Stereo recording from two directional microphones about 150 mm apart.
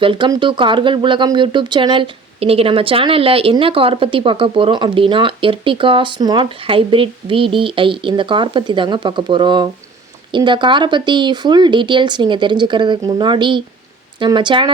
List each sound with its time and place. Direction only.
0.0 s speech: 35° right (ahead or behind)